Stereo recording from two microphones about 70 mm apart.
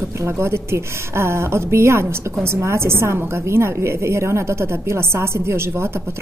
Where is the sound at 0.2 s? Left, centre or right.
Right.